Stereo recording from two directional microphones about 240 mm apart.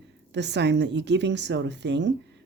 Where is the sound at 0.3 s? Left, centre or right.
Right.